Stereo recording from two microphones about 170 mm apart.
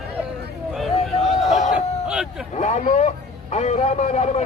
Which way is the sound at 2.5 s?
45° left (ahead or behind).